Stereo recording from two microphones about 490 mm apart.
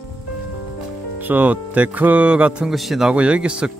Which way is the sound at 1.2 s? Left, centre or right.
Centre.